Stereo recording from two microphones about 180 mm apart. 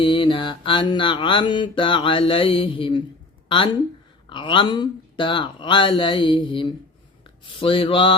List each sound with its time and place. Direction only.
0.0 s music: 30° left (ahead or behind)
7.3 s speech: 30° left (ahead or behind)